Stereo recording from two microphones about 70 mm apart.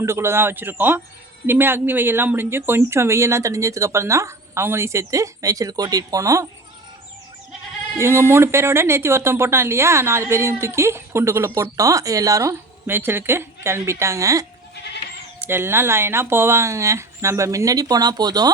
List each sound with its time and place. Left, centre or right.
0.0 s speech: right
7.9 s speech: right
12.9 s speech: right
15.4 s speech: right